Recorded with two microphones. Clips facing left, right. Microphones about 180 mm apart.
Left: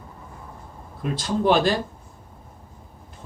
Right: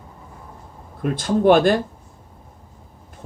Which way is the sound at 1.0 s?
50° right (ahead or behind).